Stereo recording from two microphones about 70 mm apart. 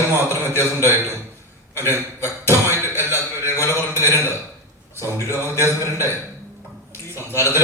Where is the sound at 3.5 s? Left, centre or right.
Left.